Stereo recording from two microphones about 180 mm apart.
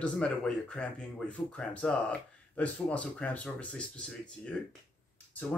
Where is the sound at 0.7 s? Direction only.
5° left (ahead or behind).